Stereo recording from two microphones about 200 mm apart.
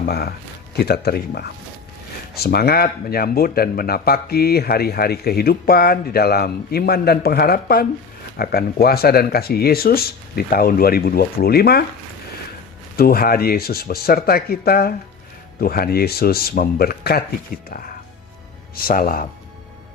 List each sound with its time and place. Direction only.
0.0 s speech: 50° left (ahead or behind)
13.0 s speech: 50° left (ahead or behind)